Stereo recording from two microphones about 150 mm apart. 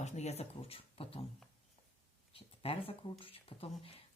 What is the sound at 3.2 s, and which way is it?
Speech, 40° left (ahead or behind).